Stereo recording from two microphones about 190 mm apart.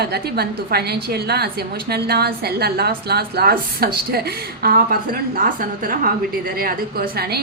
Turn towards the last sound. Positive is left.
turn(degrees=-55)  # may be behind; listen again after turning